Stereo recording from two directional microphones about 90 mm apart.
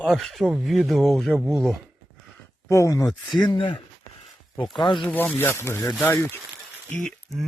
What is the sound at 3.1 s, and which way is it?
Speech, 55° left (ahead or behind).